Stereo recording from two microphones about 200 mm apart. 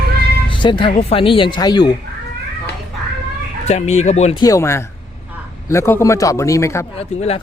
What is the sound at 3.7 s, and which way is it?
Speech, 35° left (ahead or behind).